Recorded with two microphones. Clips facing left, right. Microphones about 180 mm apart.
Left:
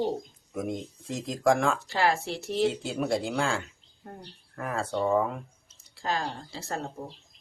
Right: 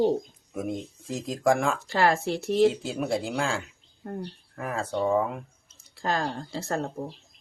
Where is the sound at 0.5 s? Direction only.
5° right (ahead or behind).